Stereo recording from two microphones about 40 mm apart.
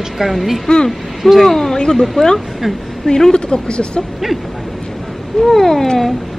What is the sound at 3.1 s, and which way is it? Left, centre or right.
Speech, centre.